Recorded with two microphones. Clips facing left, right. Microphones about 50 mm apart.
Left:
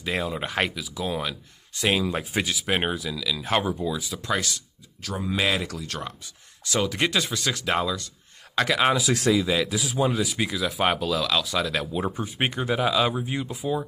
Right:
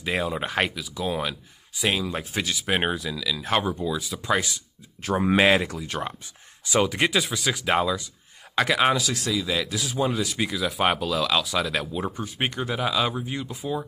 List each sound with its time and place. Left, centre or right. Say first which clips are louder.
0.0 s speech: right 1 dB; centre
4.3 s speech: right 2 dB; centre
5.2 s speech: right 6 dB; right
5.7 s speech: right 3 dB; centre
9.3 s speech: left 4 dB; centre